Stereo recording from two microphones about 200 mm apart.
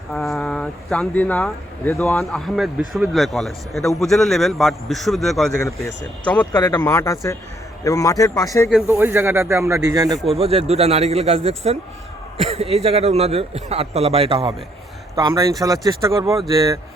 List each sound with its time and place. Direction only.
0.1 s speech: centre (ahead or behind)
8.9 s a man's voice: 10° right (ahead or behind)